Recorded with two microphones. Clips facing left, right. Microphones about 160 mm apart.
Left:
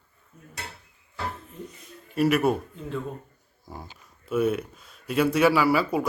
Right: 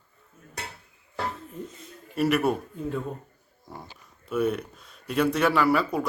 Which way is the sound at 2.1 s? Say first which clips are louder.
Left 2 dB; centre (ahead or behind).